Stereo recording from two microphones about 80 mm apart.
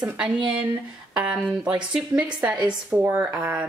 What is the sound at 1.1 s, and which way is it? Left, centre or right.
A woman's voice, centre.